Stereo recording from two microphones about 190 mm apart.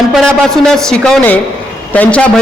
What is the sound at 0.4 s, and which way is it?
A man's voice, centre (ahead or behind).